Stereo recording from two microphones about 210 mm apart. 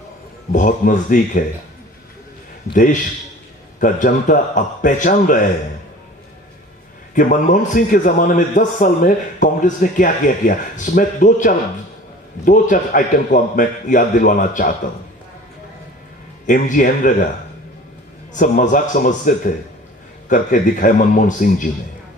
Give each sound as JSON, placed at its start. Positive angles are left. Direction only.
{"t": 0.5, "sound": "a man's voice", "side_deg": 40}
{"t": 2.7, "sound": "a man's voice", "side_deg": 40}
{"t": 7.1, "sound": "a man's voice", "side_deg": 40}
{"t": 16.5, "sound": "a man's voice", "side_deg": 40}
{"t": 18.3, "sound": "a man's voice", "side_deg": 40}